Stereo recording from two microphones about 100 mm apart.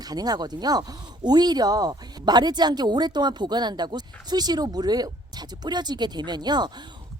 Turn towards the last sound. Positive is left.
turn(degrees=-45)  # may be behind; listen again after turning